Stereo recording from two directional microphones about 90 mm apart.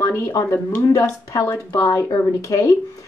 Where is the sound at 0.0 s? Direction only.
30° left (ahead or behind).